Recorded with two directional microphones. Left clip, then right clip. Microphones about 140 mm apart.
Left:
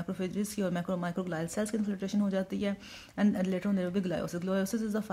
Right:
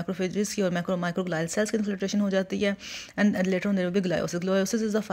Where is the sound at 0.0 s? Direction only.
20° right (ahead or behind).